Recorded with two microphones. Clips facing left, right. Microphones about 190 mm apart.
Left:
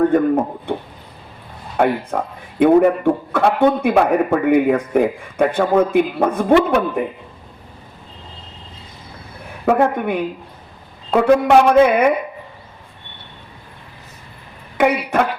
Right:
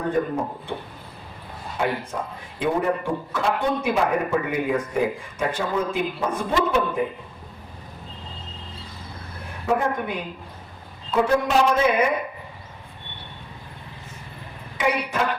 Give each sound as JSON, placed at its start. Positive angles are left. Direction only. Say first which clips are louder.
{"t": 1.7, "sound": "a man's voice", "louder": "left 8 dB", "side_deg": 60}
{"t": 9.6, "sound": "a man's voice", "louder": "left 7 dB", "side_deg": 60}
{"t": 14.8, "sound": "a man's voice", "louder": "left 7 dB", "side_deg": 60}